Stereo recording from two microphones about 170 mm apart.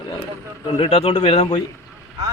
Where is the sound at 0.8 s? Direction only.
35° left (ahead or behind).